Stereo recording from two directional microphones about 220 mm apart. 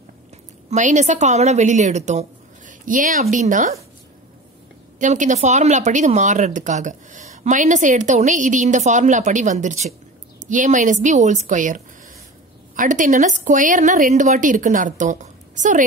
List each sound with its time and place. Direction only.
0.7 s speech: 35° right (ahead or behind)
4.9 s speech: 35° right (ahead or behind)